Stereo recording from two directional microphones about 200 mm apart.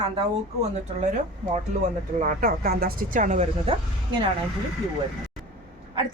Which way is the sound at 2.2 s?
40° right (ahead or behind).